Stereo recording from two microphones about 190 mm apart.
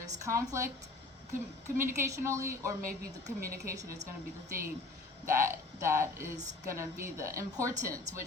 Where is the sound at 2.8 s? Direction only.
45° right (ahead or behind).